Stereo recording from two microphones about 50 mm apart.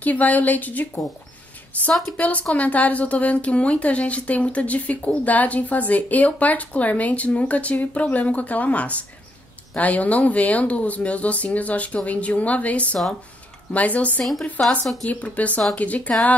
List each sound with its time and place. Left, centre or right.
0.0 s a woman's voice: left